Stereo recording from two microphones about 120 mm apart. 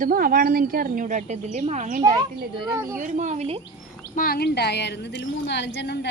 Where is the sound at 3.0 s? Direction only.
85° right.